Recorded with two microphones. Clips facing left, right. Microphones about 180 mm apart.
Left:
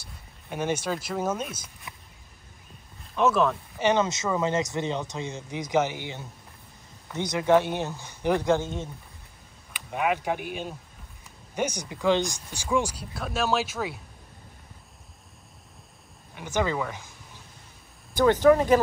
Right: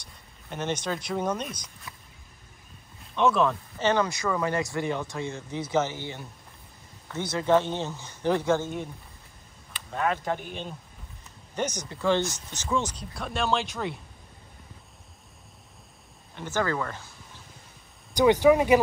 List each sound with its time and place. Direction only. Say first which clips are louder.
0.0 s speech: left 2 dB; 10° left (ahead or behind)
3.2 s speech: even; centre (ahead or behind)
3.7 s speech: left 1 dB; 15° left (ahead or behind)
9.8 s speech: left 1 dB; 15° left (ahead or behind)
16.3 s speech: left 1 dB; 15° left (ahead or behind)
18.1 s speech: even; 15° right (ahead or behind)